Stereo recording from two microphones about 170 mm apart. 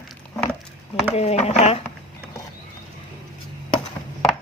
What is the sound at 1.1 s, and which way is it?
Speech, 40° left (ahead or behind).